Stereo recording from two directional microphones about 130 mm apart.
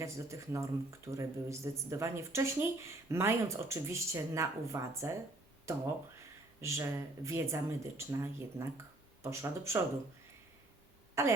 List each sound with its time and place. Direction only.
0.0 s speech: 20° right (ahead or behind)
11.2 s speech: 20° right (ahead or behind)